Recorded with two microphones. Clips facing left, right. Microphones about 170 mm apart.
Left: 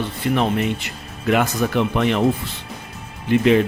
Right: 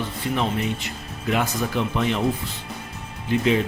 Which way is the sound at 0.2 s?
60° left (ahead or behind).